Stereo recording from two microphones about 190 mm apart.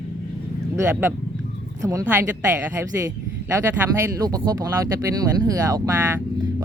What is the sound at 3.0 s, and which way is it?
Speech, 15° right (ahead or behind).